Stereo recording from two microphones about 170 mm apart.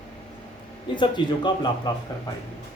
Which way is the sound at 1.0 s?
25° left (ahead or behind).